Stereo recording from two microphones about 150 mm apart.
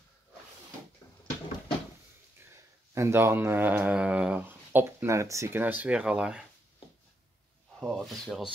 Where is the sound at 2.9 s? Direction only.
15° right (ahead or behind).